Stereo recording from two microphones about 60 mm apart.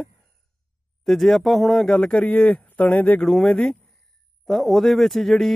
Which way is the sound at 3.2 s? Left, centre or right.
Centre.